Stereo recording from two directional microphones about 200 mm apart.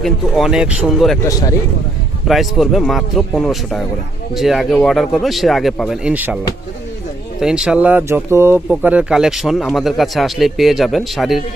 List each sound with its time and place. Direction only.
0.0 s speech: centre (ahead or behind)
1.2 s speech: 15° left (ahead or behind)
2.2 s speech: centre (ahead or behind)